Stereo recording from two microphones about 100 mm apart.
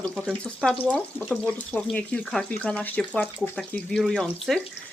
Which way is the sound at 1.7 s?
20° left (ahead or behind).